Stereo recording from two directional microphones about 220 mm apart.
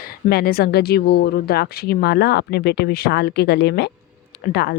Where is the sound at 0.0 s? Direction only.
45° left (ahead or behind).